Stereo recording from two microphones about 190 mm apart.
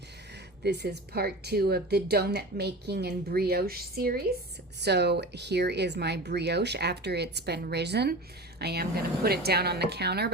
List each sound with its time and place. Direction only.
0.6 s speech: 60° right (ahead or behind)